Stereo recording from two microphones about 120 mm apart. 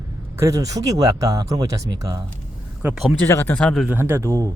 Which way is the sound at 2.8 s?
5° right (ahead or behind).